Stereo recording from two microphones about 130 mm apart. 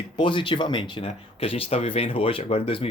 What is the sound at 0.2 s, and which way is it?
Speech, 40° left (ahead or behind).